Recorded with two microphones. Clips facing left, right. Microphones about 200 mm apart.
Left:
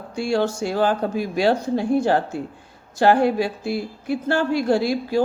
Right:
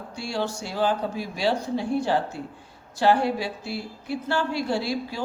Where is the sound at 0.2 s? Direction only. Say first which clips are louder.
Left 8 dB; 50° left (ahead or behind).